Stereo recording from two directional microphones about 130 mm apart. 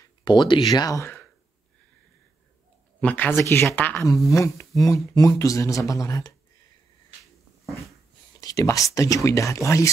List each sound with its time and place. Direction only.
0.0 s speech: 35° left (ahead or behind); by 1.2 s 20° left (ahead or behind)
3.0 s speech: 10° left (ahead or behind)
7.6 s dog: centre (ahead or behind)
8.4 s speech: 25° left (ahead or behind)